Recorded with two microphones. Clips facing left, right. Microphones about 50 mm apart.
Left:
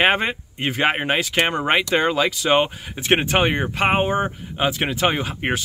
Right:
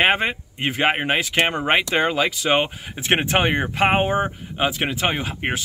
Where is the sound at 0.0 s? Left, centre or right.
Centre.